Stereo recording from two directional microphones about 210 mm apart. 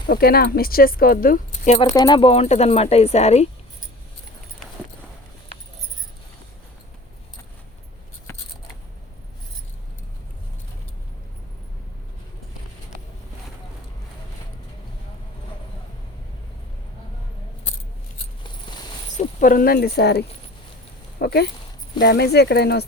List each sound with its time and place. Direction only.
0.1 s speech: 45° left (ahead or behind)
1.9 s speech: 20° left (ahead or behind)
19.1 s speech: 35° left (ahead or behind)